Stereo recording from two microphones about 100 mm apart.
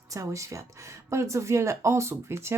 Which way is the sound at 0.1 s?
30° right (ahead or behind).